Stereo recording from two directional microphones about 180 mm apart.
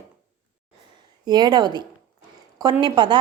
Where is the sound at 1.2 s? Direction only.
25° right (ahead or behind).